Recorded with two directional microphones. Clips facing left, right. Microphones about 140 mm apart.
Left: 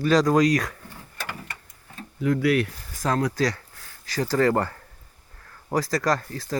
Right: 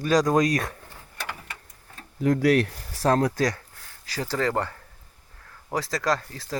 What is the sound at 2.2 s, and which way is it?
Speech, 45° right (ahead or behind).